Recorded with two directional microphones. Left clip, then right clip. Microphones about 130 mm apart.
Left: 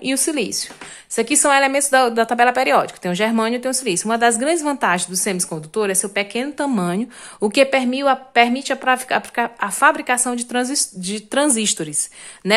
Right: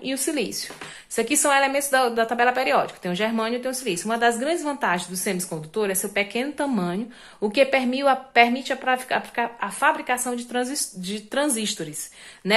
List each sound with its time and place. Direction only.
0.0 s a woman's voice: 40° left (ahead or behind)
7.3 s a woman's voice: 50° left (ahead or behind)